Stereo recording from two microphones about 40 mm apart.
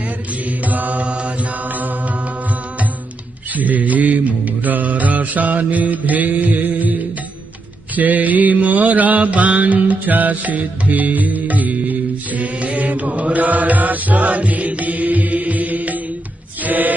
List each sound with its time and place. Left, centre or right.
0.5 s mantra: right
1.0 s mantra: right
3.5 s mantra: right
16.6 s music: right